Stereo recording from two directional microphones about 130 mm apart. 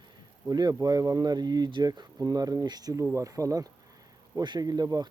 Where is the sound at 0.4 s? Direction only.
30° right (ahead or behind).